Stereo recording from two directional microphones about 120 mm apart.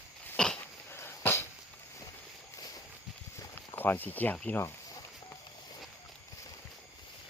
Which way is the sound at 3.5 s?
15° left (ahead or behind).